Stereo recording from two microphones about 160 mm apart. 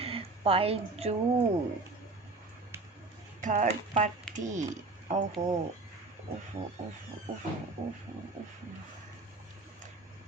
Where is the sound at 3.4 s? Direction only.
50° right (ahead or behind).